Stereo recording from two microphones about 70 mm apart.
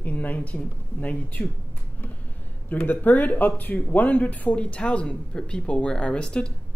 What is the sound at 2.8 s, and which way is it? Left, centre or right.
Speech, left.